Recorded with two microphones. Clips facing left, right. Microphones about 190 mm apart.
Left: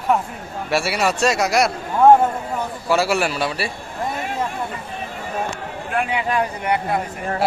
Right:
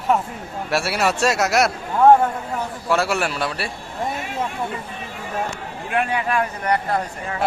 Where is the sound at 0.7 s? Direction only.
Centre (ahead or behind).